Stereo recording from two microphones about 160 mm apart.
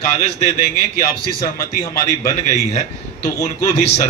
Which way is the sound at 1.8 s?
20° left (ahead or behind).